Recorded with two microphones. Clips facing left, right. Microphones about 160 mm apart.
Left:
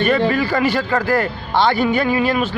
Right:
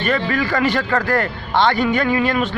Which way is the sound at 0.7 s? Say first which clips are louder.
Left 1 dB; 10° left (ahead or behind).